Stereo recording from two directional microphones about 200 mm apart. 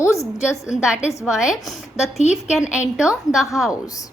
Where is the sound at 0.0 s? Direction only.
15° left (ahead or behind).